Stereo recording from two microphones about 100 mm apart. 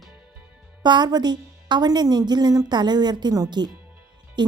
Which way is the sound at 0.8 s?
45° right (ahead or behind).